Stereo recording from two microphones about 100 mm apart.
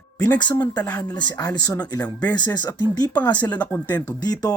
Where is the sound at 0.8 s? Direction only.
10° left (ahead or behind).